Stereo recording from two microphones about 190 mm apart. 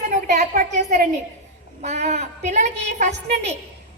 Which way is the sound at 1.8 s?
35° right (ahead or behind).